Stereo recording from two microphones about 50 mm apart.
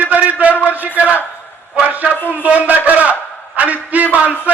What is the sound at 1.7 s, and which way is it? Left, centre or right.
A man's voice, right.